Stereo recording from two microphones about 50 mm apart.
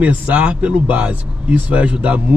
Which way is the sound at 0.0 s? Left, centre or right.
Right.